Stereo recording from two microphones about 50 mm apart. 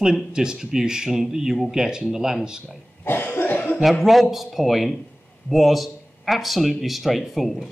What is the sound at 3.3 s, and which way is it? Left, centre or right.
Cough, left.